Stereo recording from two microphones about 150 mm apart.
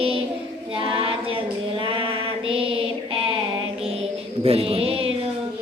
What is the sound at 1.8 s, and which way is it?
Mantra, 35° right (ahead or behind).